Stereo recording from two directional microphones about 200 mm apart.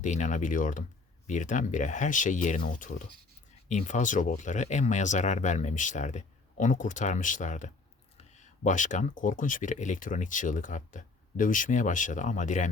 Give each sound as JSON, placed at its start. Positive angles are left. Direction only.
{"t": 0.0, "sound": "speech", "side_deg": 40}